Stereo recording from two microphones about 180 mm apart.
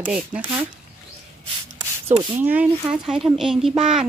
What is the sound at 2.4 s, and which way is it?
Speech, 10° right (ahead or behind).